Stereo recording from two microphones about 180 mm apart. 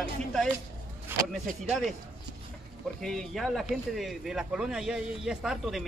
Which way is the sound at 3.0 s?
Centre (ahead or behind).